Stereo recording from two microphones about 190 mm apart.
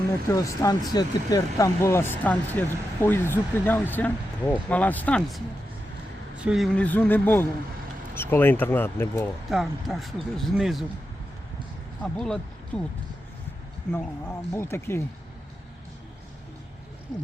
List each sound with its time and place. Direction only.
0.3 s speech: 15° left (ahead or behind)
6.3 s speech: 5° right (ahead or behind)
6.7 s speech: 10° left (ahead or behind)
9.5 s speech: centre (ahead or behind)
12.0 s speech: 5° left (ahead or behind)
13.9 s speech: 10° left (ahead or behind)